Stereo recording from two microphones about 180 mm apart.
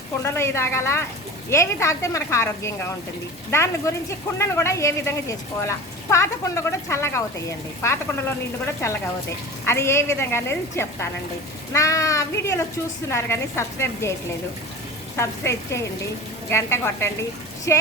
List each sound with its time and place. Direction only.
0.2 s speech: 15° left (ahead or behind)
15.1 s speech: 15° left (ahead or behind)